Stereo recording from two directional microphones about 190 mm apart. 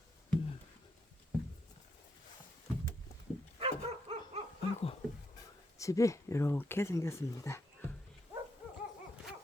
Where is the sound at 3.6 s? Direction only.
30° right (ahead or behind).